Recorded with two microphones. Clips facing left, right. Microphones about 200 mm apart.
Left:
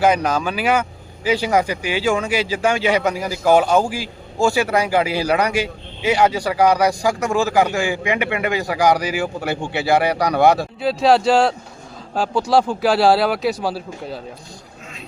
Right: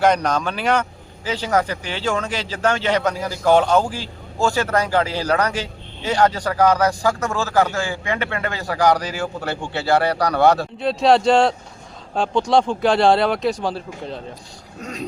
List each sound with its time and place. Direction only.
0.0 s speech: 5° left (ahead or behind)
14.8 s speech: 40° right (ahead or behind)